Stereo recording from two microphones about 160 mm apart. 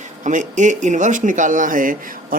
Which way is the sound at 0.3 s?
50° right (ahead or behind).